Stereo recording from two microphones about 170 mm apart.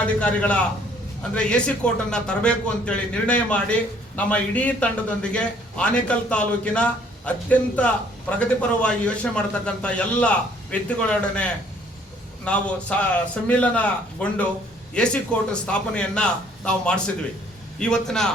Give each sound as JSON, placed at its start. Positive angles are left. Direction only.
{"t": 0.2, "sound": "a man's voice", "side_deg": 10}